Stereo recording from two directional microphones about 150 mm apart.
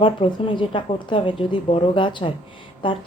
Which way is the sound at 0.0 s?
35° left (ahead or behind).